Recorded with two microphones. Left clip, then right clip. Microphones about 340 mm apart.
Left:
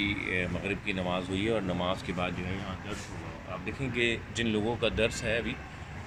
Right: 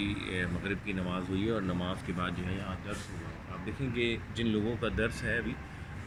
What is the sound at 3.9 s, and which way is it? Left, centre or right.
Speech, centre.